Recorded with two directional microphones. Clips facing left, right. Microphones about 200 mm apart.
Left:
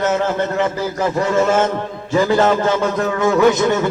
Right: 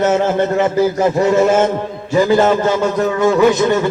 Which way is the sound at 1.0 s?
20° right (ahead or behind).